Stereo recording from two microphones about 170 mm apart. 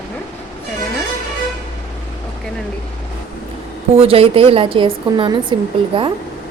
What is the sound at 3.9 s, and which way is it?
A woman's voice, 35° right (ahead or behind).